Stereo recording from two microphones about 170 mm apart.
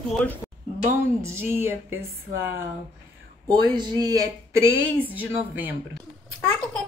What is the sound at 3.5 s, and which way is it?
Speech, 25° right (ahead or behind).